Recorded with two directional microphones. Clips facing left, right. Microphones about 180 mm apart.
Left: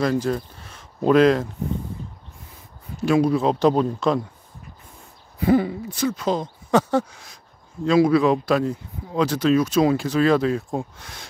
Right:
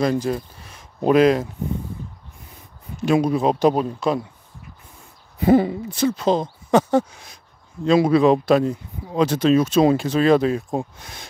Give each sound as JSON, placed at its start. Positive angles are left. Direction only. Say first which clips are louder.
{"t": 0.0, "sound": "speech", "louder": "right 1 dB", "side_deg": -15}
{"t": 3.1, "sound": "speech", "louder": "even", "side_deg": -20}
{"t": 5.4, "sound": "speech", "louder": "right 3 dB", "side_deg": -25}